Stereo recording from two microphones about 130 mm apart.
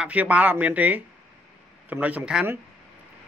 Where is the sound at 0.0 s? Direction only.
10° right (ahead or behind).